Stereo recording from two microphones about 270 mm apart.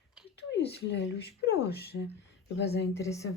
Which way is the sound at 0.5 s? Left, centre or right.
Left.